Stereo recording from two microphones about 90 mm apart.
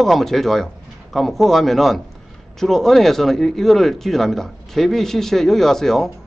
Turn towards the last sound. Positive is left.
turn(degrees=5)  # may be behind; listen again after turning